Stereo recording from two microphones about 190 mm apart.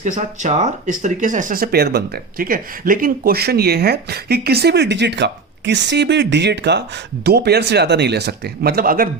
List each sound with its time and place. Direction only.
0.0 s speech: 40° right (ahead or behind)